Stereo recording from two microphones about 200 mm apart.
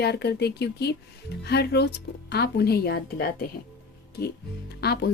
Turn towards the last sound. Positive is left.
turn(degrees=55)  # may be behind; listen again after turning